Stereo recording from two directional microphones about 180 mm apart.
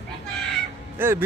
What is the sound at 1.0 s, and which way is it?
Speech, 10° right (ahead or behind).